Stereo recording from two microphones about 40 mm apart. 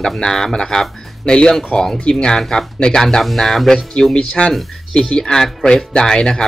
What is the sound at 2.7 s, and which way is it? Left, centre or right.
Speech, left.